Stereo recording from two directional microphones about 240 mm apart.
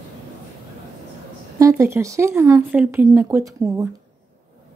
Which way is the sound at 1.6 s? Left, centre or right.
Centre.